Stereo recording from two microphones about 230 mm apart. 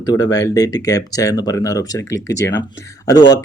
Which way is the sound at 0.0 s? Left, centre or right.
Centre.